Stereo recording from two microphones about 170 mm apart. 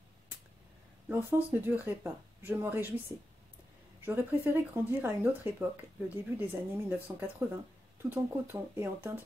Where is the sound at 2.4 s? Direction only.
10° right (ahead or behind).